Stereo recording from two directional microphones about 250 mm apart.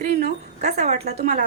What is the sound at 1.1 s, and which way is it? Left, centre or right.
Speech, right.